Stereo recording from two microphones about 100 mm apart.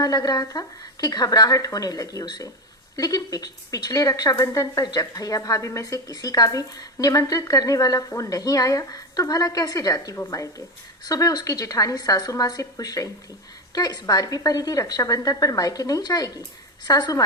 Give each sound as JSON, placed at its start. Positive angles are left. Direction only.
{"t": 0.0, "sound": "a woman's voice", "side_deg": 40}